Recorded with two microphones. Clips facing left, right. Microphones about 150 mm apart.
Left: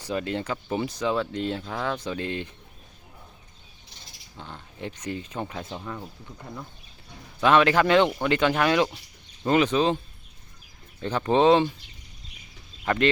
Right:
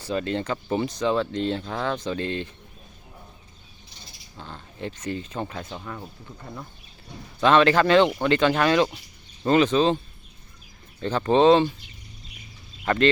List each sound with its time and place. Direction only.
0.0 s speech: 15° left (ahead or behind)
4.4 s speech: 15° left (ahead or behind)
7.4 s speech: 10° left (ahead or behind)
11.0 s speech: 10° left (ahead or behind)
12.8 s speech: 10° left (ahead or behind)